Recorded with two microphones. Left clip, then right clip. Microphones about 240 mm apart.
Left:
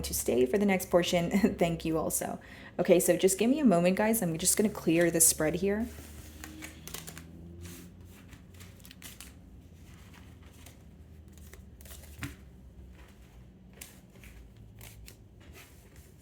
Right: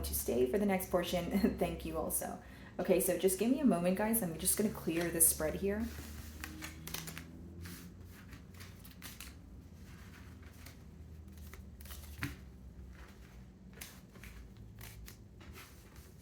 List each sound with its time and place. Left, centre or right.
0.0 s speech: left
6.4 s typewriter: centre